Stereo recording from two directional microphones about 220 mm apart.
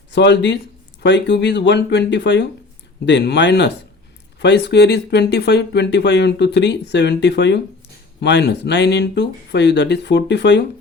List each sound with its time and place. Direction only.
0.1 s speech: 50° left (ahead or behind)